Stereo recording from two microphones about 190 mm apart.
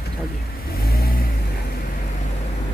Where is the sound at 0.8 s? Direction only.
50° left (ahead or behind).